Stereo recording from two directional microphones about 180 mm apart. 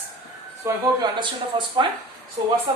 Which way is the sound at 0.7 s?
15° right (ahead or behind).